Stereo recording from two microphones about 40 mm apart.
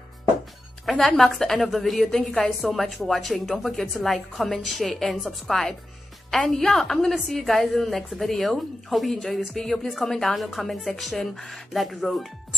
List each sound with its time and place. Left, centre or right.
0.9 s a woman's voice: centre